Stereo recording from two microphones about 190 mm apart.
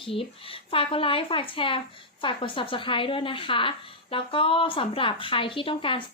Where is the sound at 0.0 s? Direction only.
30° left (ahead or behind).